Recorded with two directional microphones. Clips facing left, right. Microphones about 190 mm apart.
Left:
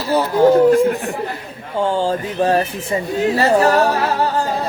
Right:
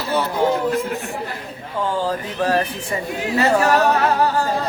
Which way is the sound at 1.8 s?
25° left (ahead or behind).